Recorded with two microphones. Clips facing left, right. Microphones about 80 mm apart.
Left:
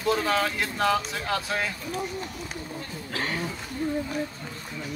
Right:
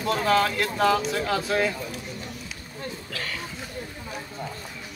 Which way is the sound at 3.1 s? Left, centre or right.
Left.